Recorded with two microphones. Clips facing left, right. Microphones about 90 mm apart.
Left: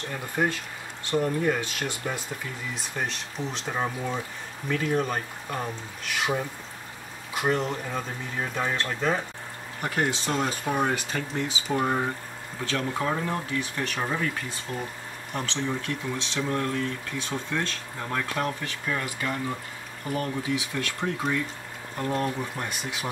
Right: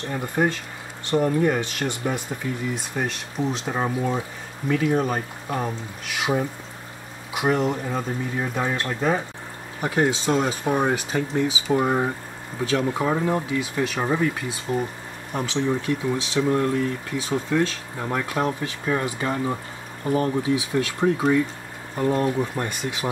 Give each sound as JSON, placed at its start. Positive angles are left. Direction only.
{"t": 0.4, "sound": "speech", "side_deg": -10}
{"t": 3.0, "sound": "speech", "side_deg": -5}
{"t": 7.3, "sound": "speech", "side_deg": -10}